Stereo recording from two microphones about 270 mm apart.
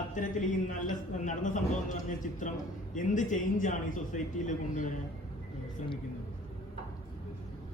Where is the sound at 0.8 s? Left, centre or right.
Left.